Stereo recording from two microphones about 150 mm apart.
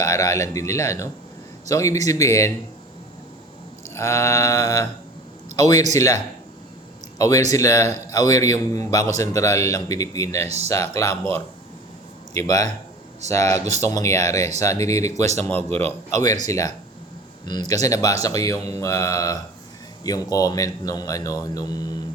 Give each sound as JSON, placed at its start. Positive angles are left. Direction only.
{"t": 0.0, "sound": "speech", "side_deg": 20}
{"t": 3.8, "sound": "speech", "side_deg": 20}
{"t": 7.2, "sound": "speech", "side_deg": 20}
{"t": 12.3, "sound": "speech", "side_deg": 25}